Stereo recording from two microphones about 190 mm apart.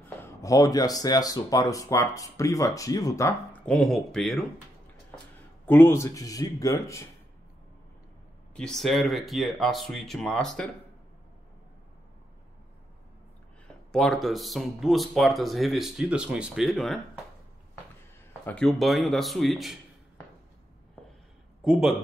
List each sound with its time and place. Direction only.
0.0 s speech: 15° left (ahead or behind)
5.7 s speech: 10° left (ahead or behind)
8.5 s speech: centre (ahead or behind)
13.9 s speech: centre (ahead or behind)
18.4 s speech: 5° left (ahead or behind)
21.6 s speech: centre (ahead or behind)